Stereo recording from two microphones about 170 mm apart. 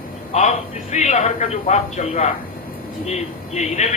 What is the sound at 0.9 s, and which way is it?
A man's voice, 45° left (ahead or behind).